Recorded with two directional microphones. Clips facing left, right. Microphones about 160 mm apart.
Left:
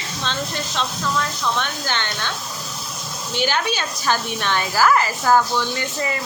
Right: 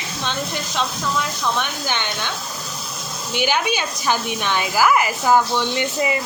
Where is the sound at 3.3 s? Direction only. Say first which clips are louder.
Right 1 dB; 15° right (ahead or behind).